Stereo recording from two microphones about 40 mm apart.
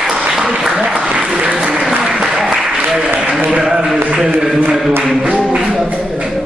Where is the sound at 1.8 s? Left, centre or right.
Centre.